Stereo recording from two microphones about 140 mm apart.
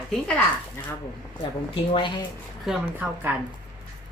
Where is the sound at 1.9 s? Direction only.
35° left (ahead or behind).